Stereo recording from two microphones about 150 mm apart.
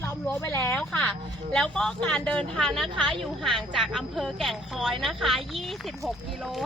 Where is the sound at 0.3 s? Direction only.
20° left (ahead or behind).